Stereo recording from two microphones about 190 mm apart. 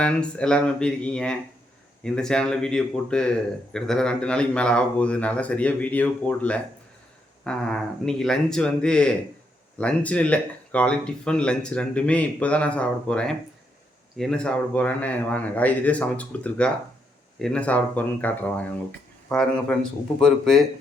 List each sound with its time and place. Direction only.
0.0 s speech: 5° left (ahead or behind)